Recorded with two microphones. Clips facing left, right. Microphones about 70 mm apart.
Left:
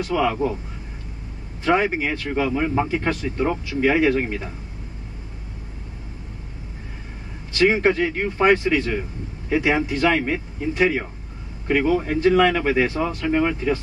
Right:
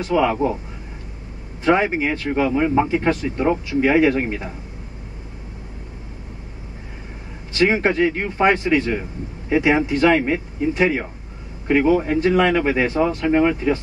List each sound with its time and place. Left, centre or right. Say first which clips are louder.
0.0 s speech: right 3 dB; right
1.6 s speech: right 2 dB; right
7.5 s speech: even; right